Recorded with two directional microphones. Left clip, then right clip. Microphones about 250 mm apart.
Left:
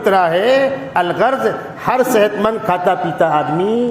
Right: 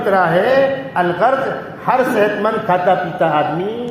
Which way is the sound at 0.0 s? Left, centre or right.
Left.